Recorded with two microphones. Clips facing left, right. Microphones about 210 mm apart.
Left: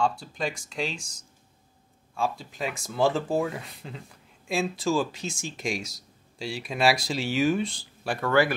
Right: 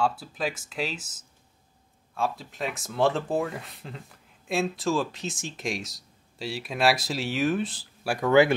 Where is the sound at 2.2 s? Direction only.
Centre (ahead or behind).